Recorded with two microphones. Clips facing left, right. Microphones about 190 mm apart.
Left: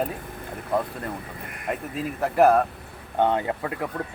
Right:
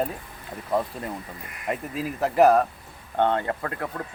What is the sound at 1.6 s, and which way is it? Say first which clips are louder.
Speech: even; centre (ahead or behind).